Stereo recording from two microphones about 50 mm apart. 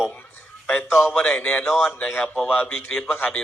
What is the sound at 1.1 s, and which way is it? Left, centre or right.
Speech, centre.